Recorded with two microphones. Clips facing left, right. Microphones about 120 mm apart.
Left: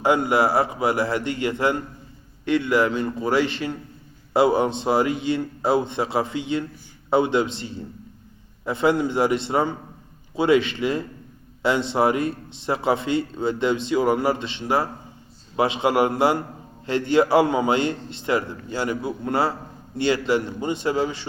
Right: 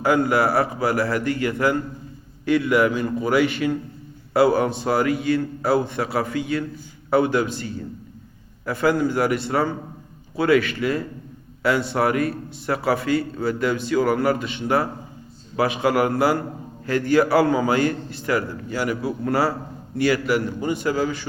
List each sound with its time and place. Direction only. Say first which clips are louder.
0.0 s a man's voice: even; 25° left (ahead or behind)